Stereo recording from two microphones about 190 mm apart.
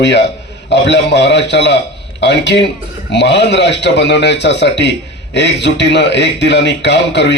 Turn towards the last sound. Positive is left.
turn(degrees=65)  # may be behind; listen again after turning